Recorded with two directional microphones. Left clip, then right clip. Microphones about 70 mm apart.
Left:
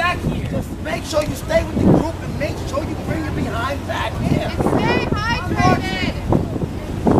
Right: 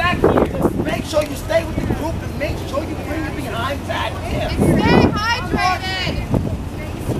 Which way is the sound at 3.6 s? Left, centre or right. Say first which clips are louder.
Right 1 dB; centre.